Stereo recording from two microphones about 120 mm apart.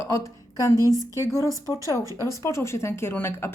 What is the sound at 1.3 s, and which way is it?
A woman's voice, 25° left (ahead or behind).